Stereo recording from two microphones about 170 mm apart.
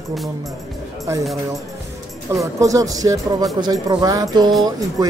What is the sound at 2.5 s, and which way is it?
Speech, 20° right (ahead or behind).